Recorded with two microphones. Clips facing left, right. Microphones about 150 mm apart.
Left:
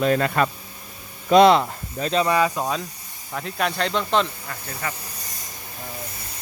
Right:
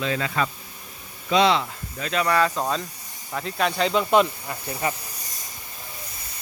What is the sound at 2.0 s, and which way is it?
Speech, 35° left (ahead or behind).